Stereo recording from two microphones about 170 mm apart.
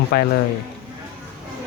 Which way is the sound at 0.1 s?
70° left (ahead or behind).